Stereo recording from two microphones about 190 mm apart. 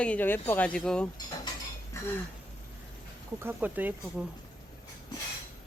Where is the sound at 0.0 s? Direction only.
10° left (ahead or behind).